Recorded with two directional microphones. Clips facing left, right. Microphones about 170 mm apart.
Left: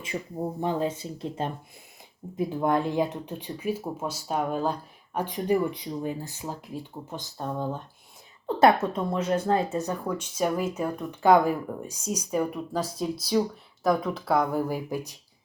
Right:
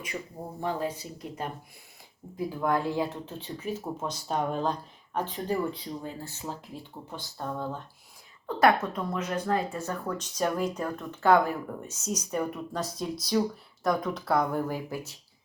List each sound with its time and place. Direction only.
0.6 s speech: 20° left (ahead or behind)